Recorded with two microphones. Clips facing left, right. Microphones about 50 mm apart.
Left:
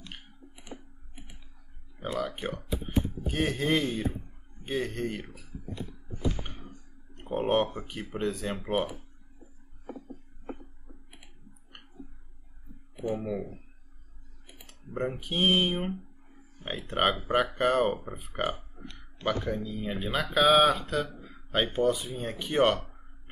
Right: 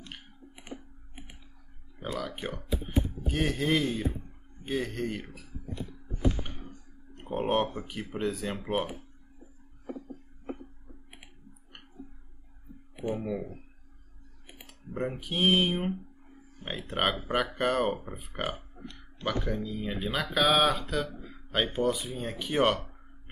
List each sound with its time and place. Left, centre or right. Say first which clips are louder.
0.7 s computer keyboard: right 2 dB; right
2.0 s speech: left 3 dB; centre
7.2 s speech: left 1 dB; centre
13.1 s speech: left 1 dB; centre
14.9 s speech: left 1 dB; centre